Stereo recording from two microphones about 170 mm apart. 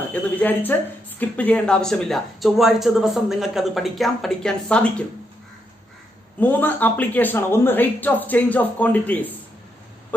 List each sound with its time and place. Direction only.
0.1 s speech: 10° left (ahead or behind)
6.4 s speech: 10° left (ahead or behind)